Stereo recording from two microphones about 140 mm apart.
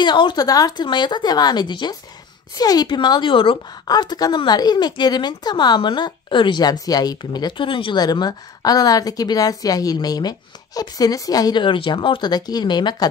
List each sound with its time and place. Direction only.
0.0 s a woman's voice: 35° left (ahead or behind)